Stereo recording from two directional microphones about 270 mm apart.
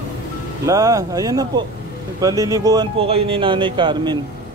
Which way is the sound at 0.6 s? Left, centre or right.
Centre.